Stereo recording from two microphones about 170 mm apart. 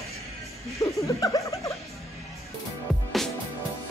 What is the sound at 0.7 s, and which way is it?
Speech, 20° left (ahead or behind).